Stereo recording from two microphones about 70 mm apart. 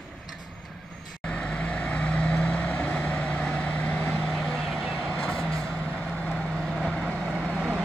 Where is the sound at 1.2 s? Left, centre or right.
Centre.